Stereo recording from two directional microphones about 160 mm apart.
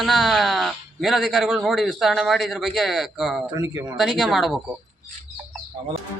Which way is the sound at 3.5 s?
20° right (ahead or behind).